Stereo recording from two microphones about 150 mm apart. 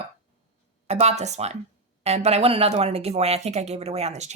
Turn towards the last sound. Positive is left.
turn(degrees=-50)  # may be behind; listen again after turning